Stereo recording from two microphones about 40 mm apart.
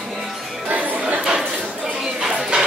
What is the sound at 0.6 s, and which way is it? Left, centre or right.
Music, right.